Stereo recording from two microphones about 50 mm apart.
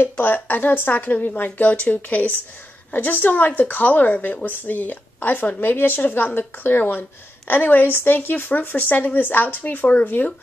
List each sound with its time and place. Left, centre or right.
0.2 s speech: left